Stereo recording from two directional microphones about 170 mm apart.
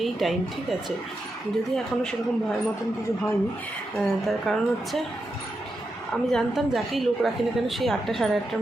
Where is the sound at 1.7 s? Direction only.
Centre (ahead or behind).